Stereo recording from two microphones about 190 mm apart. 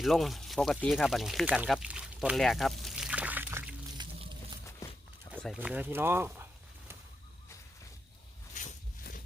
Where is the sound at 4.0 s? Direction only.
25° right (ahead or behind).